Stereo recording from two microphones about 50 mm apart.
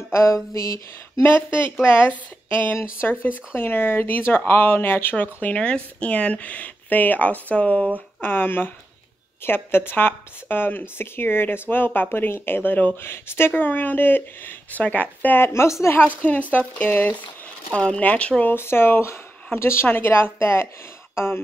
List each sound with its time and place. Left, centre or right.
0.1 s a sound: left
1.2 s speech: left
5.1 s speech: left
8.2 s speech: left
13.1 s speech: left
13.5 s speech: left
15.3 s a woman's voice: left
16.2 s speech: left
18.6 s a woman's voice: left